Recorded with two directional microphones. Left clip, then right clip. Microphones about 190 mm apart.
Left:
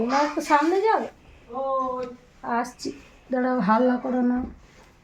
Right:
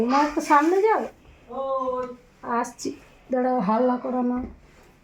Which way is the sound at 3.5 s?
5° left (ahead or behind).